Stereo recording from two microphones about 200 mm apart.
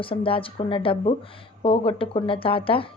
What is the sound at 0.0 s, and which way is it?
A woman's voice, 25° left (ahead or behind).